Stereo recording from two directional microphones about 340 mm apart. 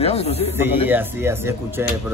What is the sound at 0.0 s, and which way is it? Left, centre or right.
Speech, centre.